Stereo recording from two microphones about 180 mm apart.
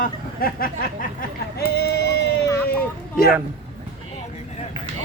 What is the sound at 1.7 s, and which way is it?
Sheep, 70° left (ahead or behind).